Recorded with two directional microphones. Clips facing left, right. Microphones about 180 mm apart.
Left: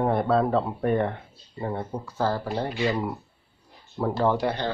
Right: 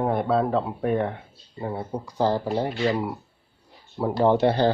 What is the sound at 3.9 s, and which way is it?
Speech, 15° right (ahead or behind).